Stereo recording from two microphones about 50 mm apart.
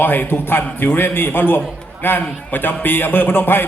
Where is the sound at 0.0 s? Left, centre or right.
Left.